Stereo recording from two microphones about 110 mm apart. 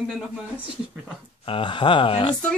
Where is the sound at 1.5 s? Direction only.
50° left (ahead or behind).